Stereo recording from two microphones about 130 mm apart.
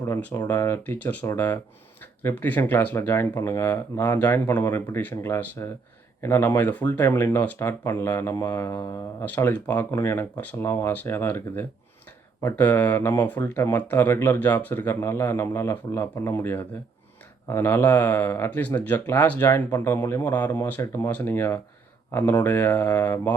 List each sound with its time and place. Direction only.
0.0 s speech: 15° left (ahead or behind)
4.0 s speech: 15° left (ahead or behind)